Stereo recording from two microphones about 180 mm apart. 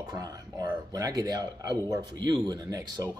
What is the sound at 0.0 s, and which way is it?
Speech, 20° right (ahead or behind).